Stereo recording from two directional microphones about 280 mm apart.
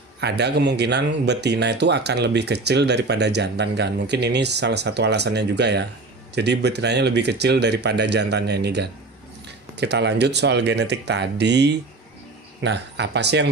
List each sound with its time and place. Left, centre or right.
0.2 s speech: right